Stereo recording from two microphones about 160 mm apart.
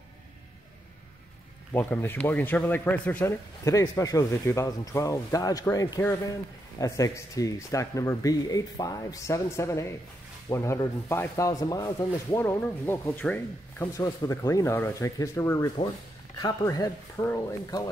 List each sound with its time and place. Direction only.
1.7 s speech: 15° left (ahead or behind)